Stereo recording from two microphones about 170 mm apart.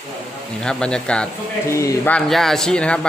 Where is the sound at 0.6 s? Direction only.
5° left (ahead or behind).